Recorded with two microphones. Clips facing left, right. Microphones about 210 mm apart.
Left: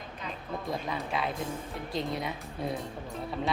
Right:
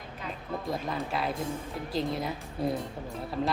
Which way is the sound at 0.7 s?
Centre (ahead or behind).